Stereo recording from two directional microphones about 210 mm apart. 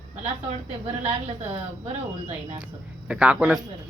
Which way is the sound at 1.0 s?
30° right (ahead or behind).